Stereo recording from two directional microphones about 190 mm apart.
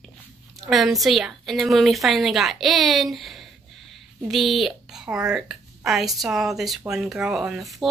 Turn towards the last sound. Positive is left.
turn(degrees=0)  # may be behind; listen again after turning